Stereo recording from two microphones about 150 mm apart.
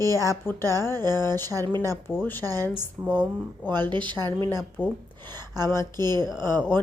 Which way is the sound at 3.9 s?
30° right (ahead or behind).